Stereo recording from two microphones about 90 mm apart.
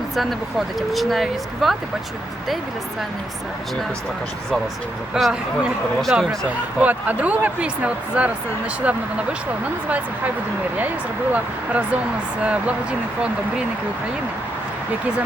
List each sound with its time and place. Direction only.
0.8 s speech: centre (ahead or behind)
5.1 s speech: 10° right (ahead or behind)
6.7 s speech: 15° right (ahead or behind)
10.8 s speech: 20° right (ahead or behind)